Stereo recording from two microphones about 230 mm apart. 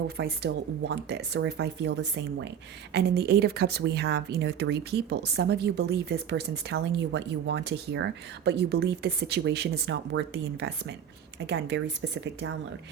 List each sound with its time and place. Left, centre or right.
0.2 s a woman's voice: right